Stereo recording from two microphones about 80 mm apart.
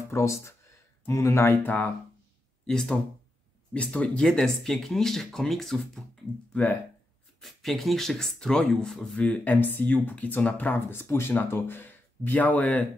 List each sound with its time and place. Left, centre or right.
0.1 s speech: left
2.6 s speech: centre
6.5 s speech: centre
7.3 s speech: centre
9.2 s speech: centre